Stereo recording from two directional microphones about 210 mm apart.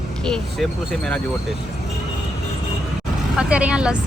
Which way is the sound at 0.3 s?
Centre (ahead or behind).